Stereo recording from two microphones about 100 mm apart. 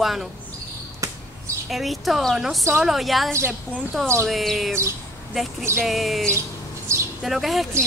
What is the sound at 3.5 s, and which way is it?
Speech, 15° right (ahead or behind).